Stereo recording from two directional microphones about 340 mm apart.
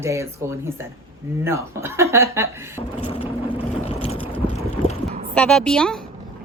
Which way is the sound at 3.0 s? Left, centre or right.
Centre.